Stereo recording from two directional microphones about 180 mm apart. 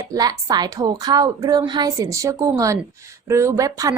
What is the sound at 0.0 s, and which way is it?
A woman's voice, 20° right (ahead or behind).